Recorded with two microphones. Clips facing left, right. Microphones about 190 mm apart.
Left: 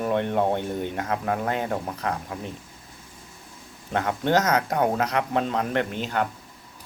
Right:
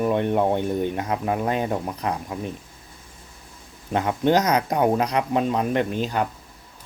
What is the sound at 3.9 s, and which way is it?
Speech, 20° right (ahead or behind).